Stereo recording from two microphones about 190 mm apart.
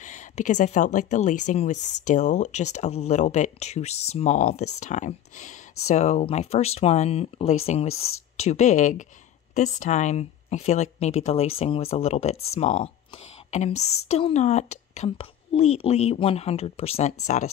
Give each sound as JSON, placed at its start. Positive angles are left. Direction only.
{"t": 0.0, "sound": "speech", "side_deg": 40}